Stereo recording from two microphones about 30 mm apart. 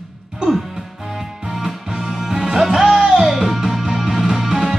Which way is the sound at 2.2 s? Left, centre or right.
Centre.